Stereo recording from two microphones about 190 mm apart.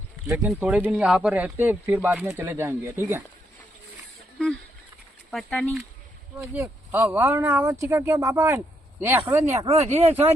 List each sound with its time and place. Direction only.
0.4 s speech: 5° right (ahead or behind)
5.3 s speech: centre (ahead or behind)
6.4 s speech: 10° right (ahead or behind)
9.6 s speech: 35° right (ahead or behind)